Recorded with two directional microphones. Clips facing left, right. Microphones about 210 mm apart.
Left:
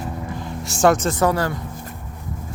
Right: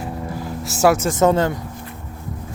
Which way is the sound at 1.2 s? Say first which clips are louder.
Right 7 dB; 20° right (ahead or behind).